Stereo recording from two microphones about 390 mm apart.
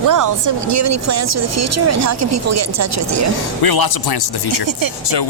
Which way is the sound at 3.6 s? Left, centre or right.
Left.